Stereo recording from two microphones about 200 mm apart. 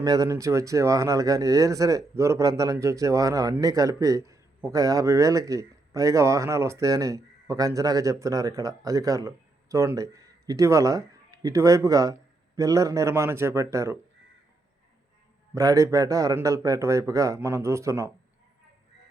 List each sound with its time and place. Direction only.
0.0 s speech: 20° right (ahead or behind)
15.5 s speech: 15° right (ahead or behind)